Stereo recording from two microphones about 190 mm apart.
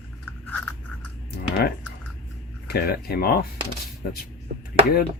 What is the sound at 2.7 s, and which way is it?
Speech, 55° left (ahead or behind).